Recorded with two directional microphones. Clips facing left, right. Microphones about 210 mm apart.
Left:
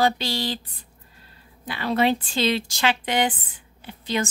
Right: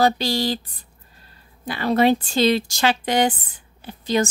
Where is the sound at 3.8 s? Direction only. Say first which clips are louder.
Right 5 dB; 40° right (ahead or behind).